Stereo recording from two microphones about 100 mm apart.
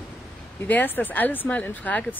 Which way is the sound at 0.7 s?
15° left (ahead or behind).